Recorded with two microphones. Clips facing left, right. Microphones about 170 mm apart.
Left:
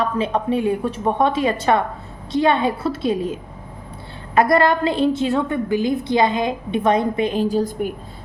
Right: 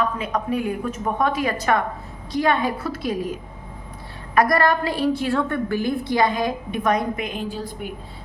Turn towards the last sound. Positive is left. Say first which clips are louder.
# left 10 dB
turn(degrees=45)  # may be behind; listen again after turning